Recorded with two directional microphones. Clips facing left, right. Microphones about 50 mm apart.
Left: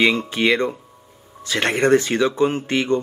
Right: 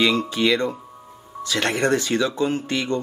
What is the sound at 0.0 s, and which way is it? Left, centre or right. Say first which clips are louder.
Speech: left 2 dB; left.